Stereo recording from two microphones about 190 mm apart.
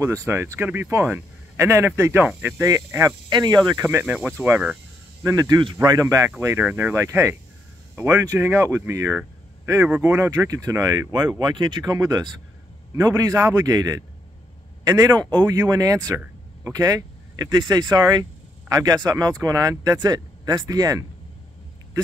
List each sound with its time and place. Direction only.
0.3 s speech: 10° right (ahead or behind)
3.8 s speech: 10° right (ahead or behind)
5.2 s speech: 20° right (ahead or behind)